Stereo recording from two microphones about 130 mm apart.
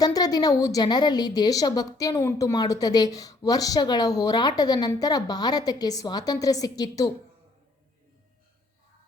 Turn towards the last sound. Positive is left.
turn(degrees=30)  # may be behind; listen again after turning